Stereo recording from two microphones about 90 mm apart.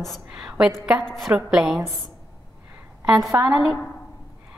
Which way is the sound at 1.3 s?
10° right (ahead or behind).